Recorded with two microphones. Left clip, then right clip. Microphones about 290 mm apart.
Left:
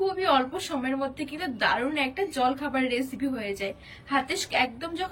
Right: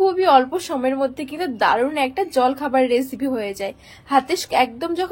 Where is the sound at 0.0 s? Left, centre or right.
Centre.